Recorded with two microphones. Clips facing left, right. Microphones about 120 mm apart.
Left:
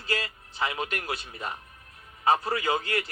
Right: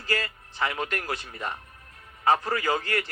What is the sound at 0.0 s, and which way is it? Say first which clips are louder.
Music: right 2 dB; 45° right (ahead or behind).